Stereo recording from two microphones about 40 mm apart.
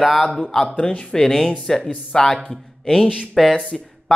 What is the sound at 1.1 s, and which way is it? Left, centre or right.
A man's voice, centre.